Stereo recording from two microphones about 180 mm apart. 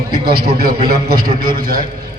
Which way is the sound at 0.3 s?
55° right (ahead or behind).